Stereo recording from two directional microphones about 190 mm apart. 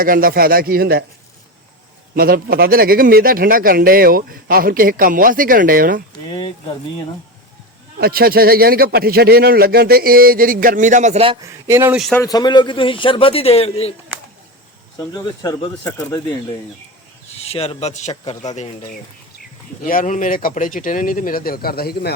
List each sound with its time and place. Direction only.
0.0 s speech: 50° right (ahead or behind)
2.1 s speech: 50° right (ahead or behind)
7.9 s speech: 55° right (ahead or behind); by 11.3 s 35° right (ahead or behind)
11.7 s a man's voice: 10° right (ahead or behind)
11.9 s speech: centre (ahead or behind)
12.2 s a man's voice: 20° left (ahead or behind)
14.9 s speech: 20° left (ahead or behind)
17.3 s speech: 30° left (ahead or behind)
19.8 s speech: 45° left (ahead or behind)